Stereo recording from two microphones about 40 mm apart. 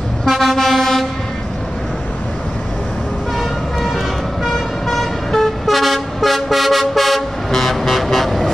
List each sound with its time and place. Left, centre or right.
0.2 s vehicle: centre
3.3 s vehicle: centre